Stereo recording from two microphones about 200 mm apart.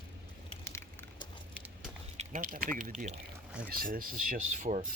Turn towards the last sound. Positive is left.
turn(degrees=-40)  # may be behind; listen again after turning